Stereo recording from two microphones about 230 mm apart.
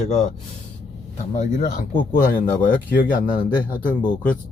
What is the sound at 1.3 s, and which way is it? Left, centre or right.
Speech, left.